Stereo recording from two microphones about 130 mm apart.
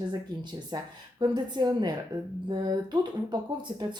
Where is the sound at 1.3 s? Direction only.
30° right (ahead or behind).